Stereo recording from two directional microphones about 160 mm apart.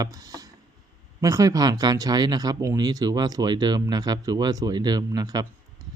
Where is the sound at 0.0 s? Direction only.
25° right (ahead or behind).